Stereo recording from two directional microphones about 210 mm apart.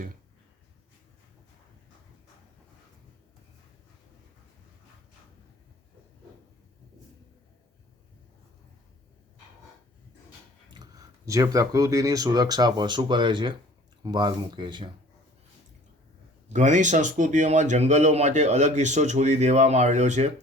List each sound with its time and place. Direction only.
10.7 s speech: 20° right (ahead or behind)
16.5 s a man's voice: 35° right (ahead or behind)